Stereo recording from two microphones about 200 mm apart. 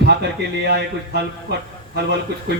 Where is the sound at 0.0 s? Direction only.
55° right (ahead or behind).